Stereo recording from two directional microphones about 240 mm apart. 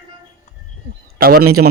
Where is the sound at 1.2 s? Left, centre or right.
Right.